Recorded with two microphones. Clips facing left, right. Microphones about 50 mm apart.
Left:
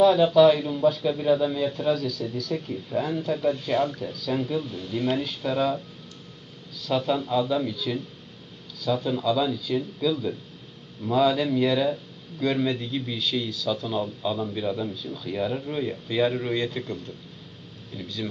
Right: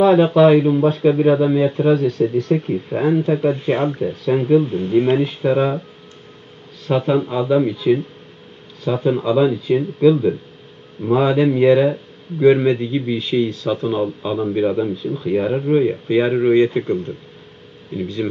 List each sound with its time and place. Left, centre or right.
0.0 s speech: right